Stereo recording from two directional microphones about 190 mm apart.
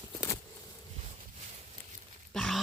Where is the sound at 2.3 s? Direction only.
Centre (ahead or behind).